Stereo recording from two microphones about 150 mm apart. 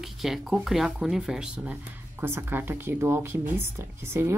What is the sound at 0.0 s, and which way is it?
Speech, centre (ahead or behind).